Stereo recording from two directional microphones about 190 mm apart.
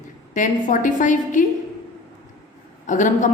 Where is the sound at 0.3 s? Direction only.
40° left (ahead or behind).